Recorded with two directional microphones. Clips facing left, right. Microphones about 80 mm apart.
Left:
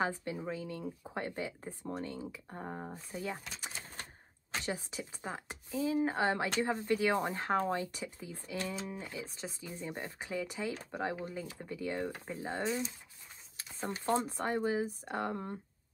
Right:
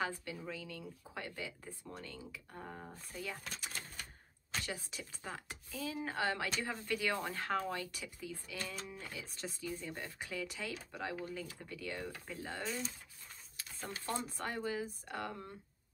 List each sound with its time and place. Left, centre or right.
0.0 s speech: left
4.6 s speech: left